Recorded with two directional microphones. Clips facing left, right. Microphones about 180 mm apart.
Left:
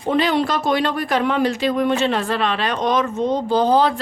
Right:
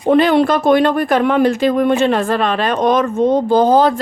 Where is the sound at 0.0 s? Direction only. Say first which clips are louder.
Right 7 dB; 55° right (ahead or behind).